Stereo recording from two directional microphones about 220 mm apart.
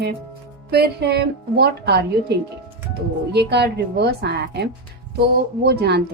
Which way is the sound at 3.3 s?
50° right (ahead or behind).